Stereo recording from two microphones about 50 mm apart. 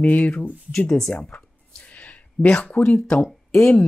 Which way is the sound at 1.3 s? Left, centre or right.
Left.